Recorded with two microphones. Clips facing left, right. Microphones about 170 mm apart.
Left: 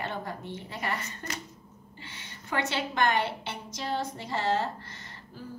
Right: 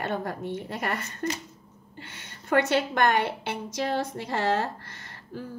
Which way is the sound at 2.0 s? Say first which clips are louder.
Right 3 dB; 50° right (ahead or behind).